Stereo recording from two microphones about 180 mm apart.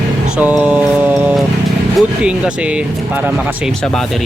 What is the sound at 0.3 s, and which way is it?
Music, 5° right (ahead or behind).